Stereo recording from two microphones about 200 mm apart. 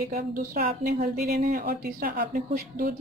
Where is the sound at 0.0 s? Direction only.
45° right (ahead or behind).